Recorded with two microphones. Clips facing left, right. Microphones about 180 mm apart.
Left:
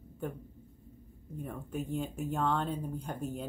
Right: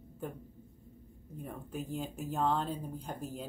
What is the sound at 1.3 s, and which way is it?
Speech, centre (ahead or behind).